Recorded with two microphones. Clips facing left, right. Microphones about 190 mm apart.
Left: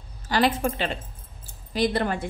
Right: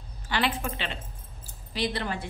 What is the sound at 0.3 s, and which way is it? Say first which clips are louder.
A woman's voice: left 6 dB; 40° left (ahead or behind).